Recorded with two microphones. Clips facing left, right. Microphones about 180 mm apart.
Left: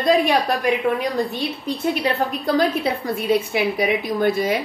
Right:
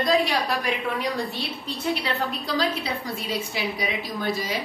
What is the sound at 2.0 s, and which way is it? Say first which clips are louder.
Speech: left 7 dB; 50° left (ahead or behind).